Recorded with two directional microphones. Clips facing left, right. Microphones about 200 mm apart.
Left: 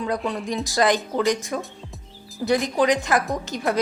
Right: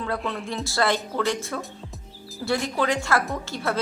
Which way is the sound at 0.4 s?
15° left (ahead or behind).